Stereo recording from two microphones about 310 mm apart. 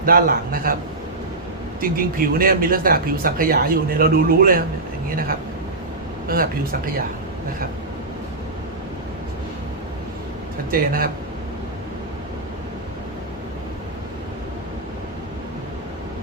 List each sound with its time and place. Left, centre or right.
0.0 s speech: right
1.8 s speech: right
6.2 s speech: right
10.7 s speech: right